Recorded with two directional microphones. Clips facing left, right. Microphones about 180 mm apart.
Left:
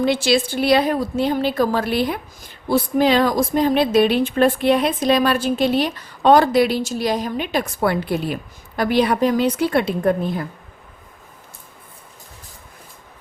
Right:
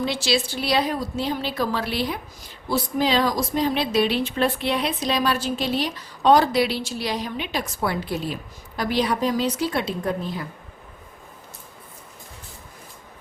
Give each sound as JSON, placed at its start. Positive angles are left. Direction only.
{"t": 0.0, "sound": "a woman's voice", "side_deg": 55}